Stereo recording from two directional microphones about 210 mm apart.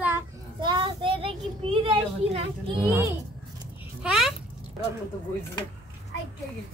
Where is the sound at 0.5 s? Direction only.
20° right (ahead or behind).